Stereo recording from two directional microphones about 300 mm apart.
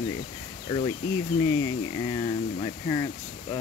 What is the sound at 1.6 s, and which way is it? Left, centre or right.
Speech, centre.